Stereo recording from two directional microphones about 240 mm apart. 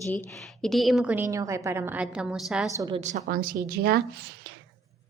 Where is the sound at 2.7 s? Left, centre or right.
Centre.